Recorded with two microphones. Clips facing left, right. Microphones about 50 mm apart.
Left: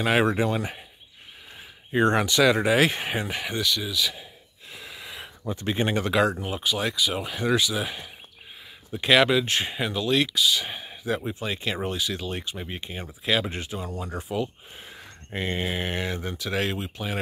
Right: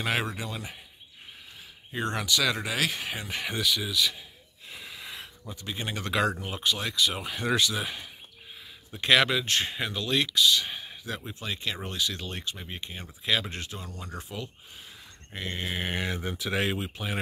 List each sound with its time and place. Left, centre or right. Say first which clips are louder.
0.3 s speech: left 11 dB; left
1.9 s speech: left 8 dB; left
3.4 s speech: left 2 dB; centre
4.6 s a sound: left 1 dB; centre
5.5 s speech: left 10 dB; left
6.1 s speech: left 1 dB; centre
14.9 s a sound: left 7 dB; left
15.7 s speech: left 2 dB; centre